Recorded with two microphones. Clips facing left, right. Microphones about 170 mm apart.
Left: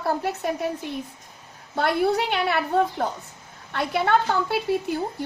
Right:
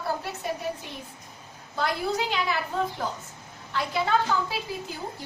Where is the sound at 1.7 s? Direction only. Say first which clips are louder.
Left 6 dB; 60° left (ahead or behind).